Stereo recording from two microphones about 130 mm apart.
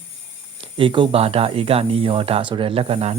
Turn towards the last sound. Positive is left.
turn(degrees=-50)  # may be behind; listen again after turning